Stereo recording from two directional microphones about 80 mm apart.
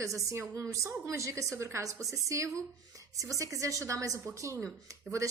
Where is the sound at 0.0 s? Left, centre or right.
Right.